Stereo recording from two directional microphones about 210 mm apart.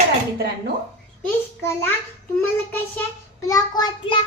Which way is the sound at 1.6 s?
10° left (ahead or behind).